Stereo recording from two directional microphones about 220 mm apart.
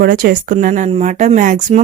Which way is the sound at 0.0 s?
40° right (ahead or behind).